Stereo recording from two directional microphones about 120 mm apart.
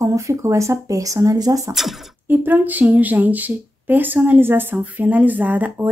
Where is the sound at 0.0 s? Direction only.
25° right (ahead or behind).